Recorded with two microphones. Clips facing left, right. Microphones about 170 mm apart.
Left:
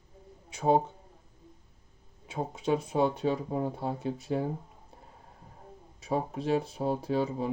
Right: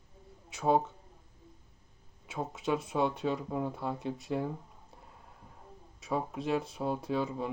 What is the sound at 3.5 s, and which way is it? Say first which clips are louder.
Speech: left 3 dB; 30° left (ahead or behind).